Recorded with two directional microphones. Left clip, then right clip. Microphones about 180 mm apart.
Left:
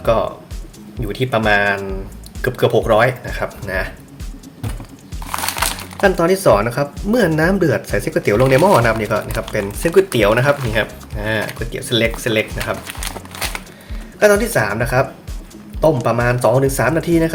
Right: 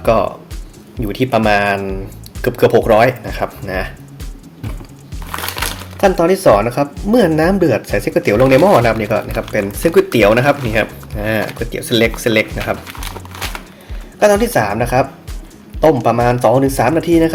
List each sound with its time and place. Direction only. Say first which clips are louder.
0.0 s speech: right 3 dB; 30° right (ahead or behind)
6.0 s speech: right 2 dB; 10° right (ahead or behind); by 12.7 s 30° right (ahead or behind)
14.2 s speech: right 2 dB; 15° right (ahead or behind)